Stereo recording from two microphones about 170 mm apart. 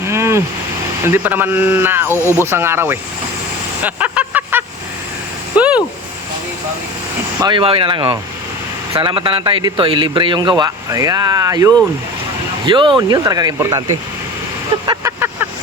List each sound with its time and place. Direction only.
0.0 s a sound: 15° right (ahead or behind)
1.0 s a man's voice: 10° right (ahead or behind)
3.8 s vehicle: 10° right (ahead or behind)
5.5 s a sound: 5° right (ahead or behind)
7.3 s a man's voice: 25° right (ahead or behind)
14.8 s vehicle: 15° right (ahead or behind)